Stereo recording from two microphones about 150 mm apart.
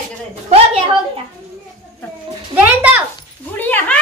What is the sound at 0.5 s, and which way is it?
Speech, 40° right (ahead or behind).